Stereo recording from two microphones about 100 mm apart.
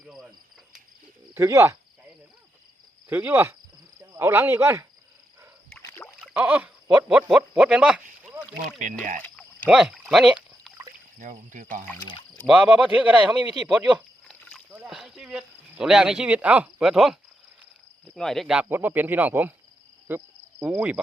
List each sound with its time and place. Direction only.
1.4 s speech: 30° right (ahead or behind)
3.1 s speech: 20° right (ahead or behind)
6.3 s speech: 15° right (ahead or behind)
9.0 s rowboat: 15° left (ahead or behind)
9.6 s speech: 5° right (ahead or behind)
10.1 s a sound: 5° right (ahead or behind)
12.5 s speech: 10° right (ahead or behind)
14.3 s rowboat: 5° left (ahead or behind)
14.8 s speech: 5° right (ahead or behind)
18.2 s speech: 5° left (ahead or behind)
18.7 s speech: 20° right (ahead or behind)
20.1 s cricket: 15° right (ahead or behind)